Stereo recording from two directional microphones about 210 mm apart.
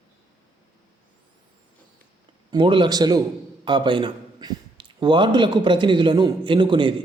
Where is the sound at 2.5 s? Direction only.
20° right (ahead or behind).